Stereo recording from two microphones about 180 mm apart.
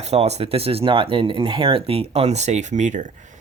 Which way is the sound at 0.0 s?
35° right (ahead or behind).